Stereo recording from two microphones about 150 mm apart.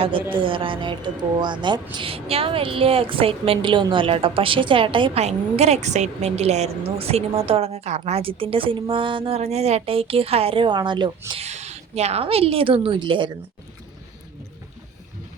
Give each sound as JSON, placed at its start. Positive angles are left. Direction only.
{"t": 0.3, "sound": "a woman's voice", "side_deg": -35}
{"t": 5.2, "sound": "a woman's voice", "side_deg": -45}
{"t": 11.3, "sound": "a woman's voice", "side_deg": -45}